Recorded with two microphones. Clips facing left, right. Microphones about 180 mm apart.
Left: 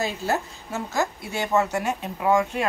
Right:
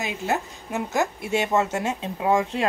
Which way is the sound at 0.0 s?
20° right (ahead or behind).